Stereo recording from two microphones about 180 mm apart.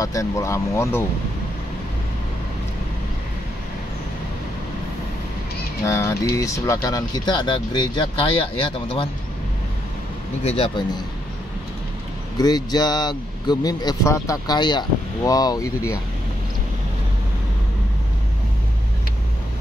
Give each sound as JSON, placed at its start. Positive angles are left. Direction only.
{"t": 0.0, "sound": "speech", "side_deg": 15}
{"t": 5.9, "sound": "speech", "side_deg": 15}
{"t": 10.4, "sound": "speech", "side_deg": 35}
{"t": 12.4, "sound": "speech", "side_deg": 20}